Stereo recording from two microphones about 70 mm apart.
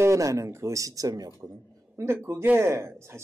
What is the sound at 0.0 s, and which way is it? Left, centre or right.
Speech, right.